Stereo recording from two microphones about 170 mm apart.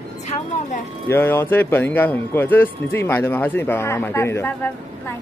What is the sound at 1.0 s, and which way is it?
A man's voice, 15° left (ahead or behind).